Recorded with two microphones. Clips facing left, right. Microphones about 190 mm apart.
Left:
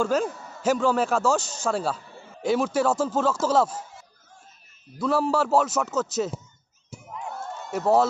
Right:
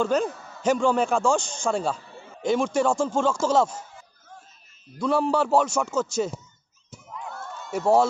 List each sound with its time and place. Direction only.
0.0 s a man's voice: 5° left (ahead or behind)
4.9 s a man's voice: 5° left (ahead or behind)
6.9 s crowd: 20° left (ahead or behind)